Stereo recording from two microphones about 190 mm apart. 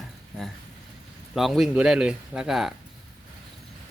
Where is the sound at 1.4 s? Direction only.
Centre (ahead or behind).